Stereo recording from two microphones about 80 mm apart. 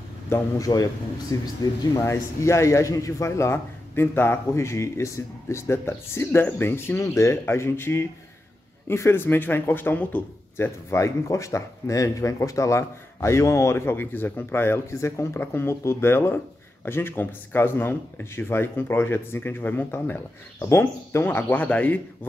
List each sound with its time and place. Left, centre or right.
0.3 s a man's voice: left
7.0 s speech: left
10.6 s speech: left